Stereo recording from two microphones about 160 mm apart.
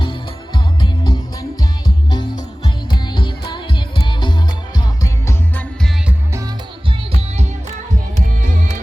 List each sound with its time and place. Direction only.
0.8 s music: 25° left (ahead or behind)
5.0 s music: 15° left (ahead or behind)
6.1 s music: 15° right (ahead or behind)